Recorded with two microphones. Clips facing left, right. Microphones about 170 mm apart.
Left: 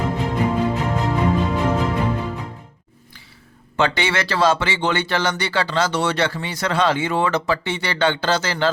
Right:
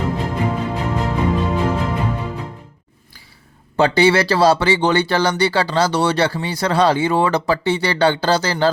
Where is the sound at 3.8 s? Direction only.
35° right (ahead or behind).